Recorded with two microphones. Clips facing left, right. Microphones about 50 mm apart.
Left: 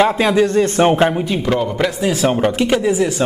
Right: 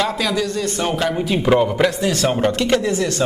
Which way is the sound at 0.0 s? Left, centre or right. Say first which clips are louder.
Left 7 dB; left.